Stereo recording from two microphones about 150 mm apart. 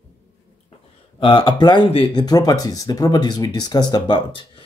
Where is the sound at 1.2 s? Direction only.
35° left (ahead or behind).